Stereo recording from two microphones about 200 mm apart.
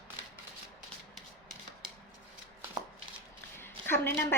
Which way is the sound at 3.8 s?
10° left (ahead or behind).